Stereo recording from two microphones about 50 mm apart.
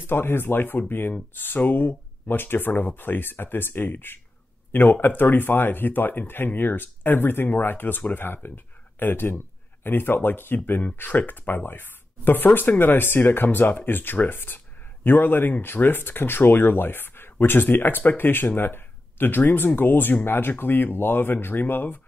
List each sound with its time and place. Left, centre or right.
0.0 s speech: left